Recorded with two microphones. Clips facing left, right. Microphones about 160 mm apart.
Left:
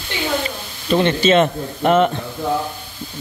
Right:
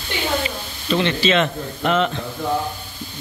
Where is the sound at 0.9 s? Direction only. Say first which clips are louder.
Left 4 dB; 45° left (ahead or behind).